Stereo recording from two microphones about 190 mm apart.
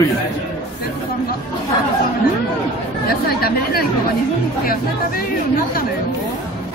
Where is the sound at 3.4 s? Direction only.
50° left (ahead or behind).